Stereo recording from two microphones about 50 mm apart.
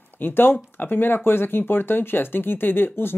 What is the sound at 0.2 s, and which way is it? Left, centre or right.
Speech, left.